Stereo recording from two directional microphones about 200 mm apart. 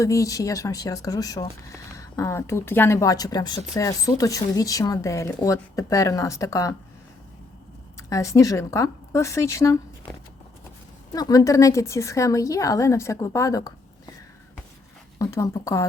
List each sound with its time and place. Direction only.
0.0 s speech: 15° left (ahead or behind)
8.1 s speech: 15° left (ahead or behind)
11.1 s speech: 20° left (ahead or behind)
15.2 s speech: 15° left (ahead or behind)